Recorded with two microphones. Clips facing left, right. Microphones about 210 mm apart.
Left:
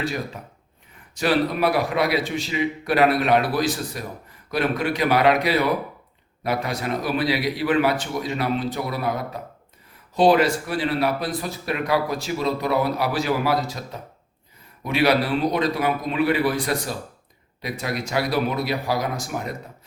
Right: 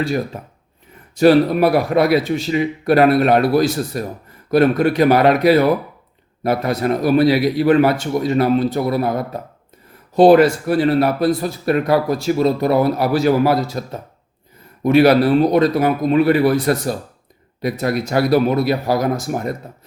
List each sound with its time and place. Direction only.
1.2 s speech: 45° right (ahead or behind)
14.8 s speech: 50° right (ahead or behind)